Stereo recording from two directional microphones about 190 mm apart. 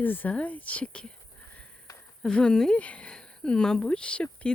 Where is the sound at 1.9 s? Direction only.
20° left (ahead or behind).